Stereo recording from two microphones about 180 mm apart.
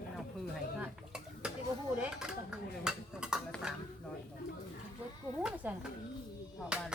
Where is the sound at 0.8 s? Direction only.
5° right (ahead or behind).